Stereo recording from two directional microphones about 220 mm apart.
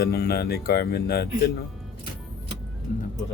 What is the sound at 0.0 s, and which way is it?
Speech, 45° left (ahead or behind).